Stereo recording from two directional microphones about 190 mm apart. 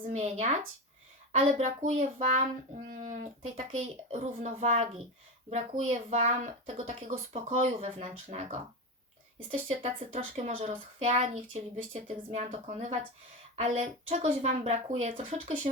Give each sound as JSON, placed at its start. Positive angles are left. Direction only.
{"t": 0.0, "sound": "speech", "side_deg": -35}